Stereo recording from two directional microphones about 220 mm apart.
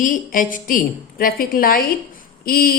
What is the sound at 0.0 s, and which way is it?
Speech, 35° left (ahead or behind).